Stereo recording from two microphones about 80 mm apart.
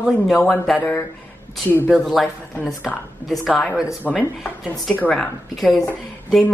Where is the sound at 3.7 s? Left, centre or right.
Centre.